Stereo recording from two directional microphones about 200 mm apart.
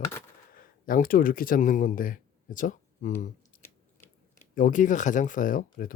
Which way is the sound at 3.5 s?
40° left (ahead or behind).